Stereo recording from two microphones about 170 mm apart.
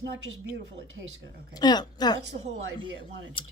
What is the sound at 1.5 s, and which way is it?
Speech, 25° left (ahead or behind).